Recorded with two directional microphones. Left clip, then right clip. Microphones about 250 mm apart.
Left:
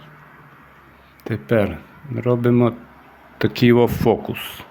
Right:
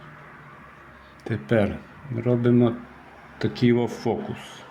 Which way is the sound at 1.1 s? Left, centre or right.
Centre.